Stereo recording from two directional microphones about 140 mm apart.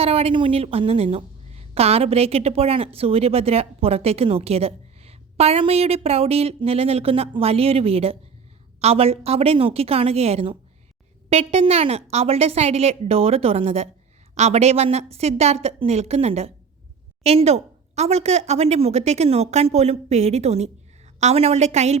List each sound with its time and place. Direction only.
0.0 s a woman's voice: 45° right (ahead or behind)